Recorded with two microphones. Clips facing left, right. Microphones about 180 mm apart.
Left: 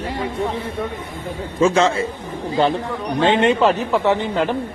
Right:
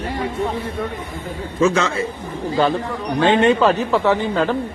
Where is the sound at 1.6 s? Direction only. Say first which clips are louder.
Left 2 dB; 30° left (ahead or behind).